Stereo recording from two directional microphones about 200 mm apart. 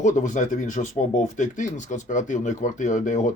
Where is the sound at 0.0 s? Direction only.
40° left (ahead or behind).